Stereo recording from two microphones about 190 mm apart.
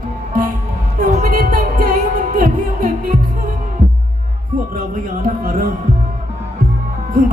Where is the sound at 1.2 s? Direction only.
50° right (ahead or behind).